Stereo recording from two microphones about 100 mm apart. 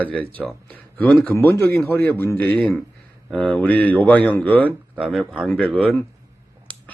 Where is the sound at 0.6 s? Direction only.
15° left (ahead or behind).